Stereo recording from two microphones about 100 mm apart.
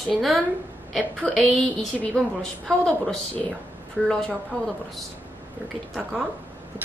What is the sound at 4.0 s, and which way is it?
Speech, 10° right (ahead or behind).